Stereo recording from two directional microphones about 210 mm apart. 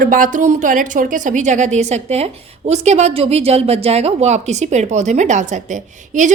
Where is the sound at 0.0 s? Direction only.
40° right (ahead or behind).